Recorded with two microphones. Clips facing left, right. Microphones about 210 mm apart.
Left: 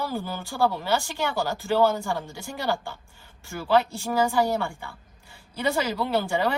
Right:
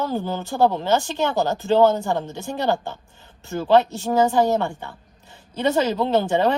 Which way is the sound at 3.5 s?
25° right (ahead or behind).